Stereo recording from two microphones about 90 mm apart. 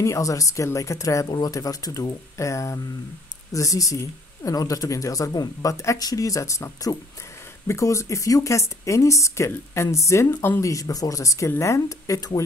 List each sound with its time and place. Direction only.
0.0 s speech: 35° left (ahead or behind)
10.3 s speech: 25° left (ahead or behind)
10.6 s speech: 40° left (ahead or behind)